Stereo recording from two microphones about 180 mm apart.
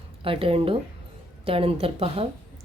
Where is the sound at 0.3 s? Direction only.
30° right (ahead or behind).